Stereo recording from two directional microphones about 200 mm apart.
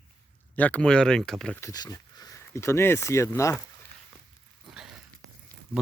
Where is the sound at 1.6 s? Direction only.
20° left (ahead or behind).